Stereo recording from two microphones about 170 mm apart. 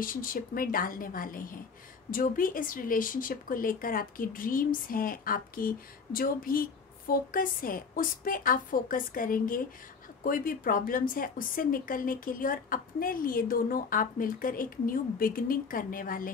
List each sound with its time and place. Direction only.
0.0 s speech: 55° left (ahead or behind)